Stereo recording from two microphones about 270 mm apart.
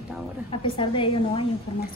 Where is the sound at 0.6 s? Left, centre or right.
Centre.